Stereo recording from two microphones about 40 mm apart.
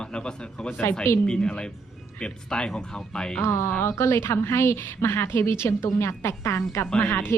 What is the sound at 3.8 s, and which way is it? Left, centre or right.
A woman's voice, left.